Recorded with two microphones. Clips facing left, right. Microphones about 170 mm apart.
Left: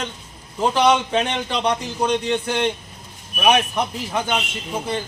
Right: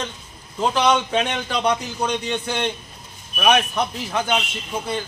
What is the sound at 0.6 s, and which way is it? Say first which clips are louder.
Speech: left 2 dB; 5° left (ahead or behind).